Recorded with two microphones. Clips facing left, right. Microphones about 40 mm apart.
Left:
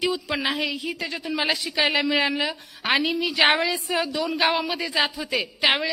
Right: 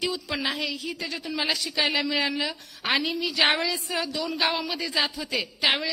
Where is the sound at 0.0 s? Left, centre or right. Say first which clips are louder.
Left 4 dB; centre.